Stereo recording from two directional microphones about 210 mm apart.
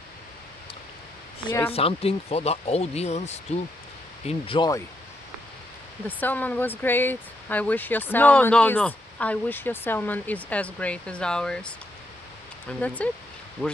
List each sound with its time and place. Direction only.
1.7 s speech: 30° left (ahead or behind)
6.0 s speech: 10° left (ahead or behind)
12.8 s speech: 5° left (ahead or behind)